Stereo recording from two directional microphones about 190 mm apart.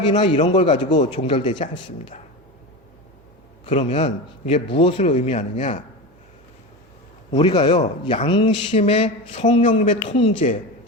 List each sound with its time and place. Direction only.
0.1 s a man's voice: 40° left (ahead or behind)
0.4 s a man's voice: 25° left (ahead or behind)
0.9 s a man's voice: 40° left (ahead or behind)
1.4 s a man's voice: 25° left (ahead or behind)
3.7 s a man's voice: 30° left (ahead or behind)
7.3 s a man's voice: 25° left (ahead or behind)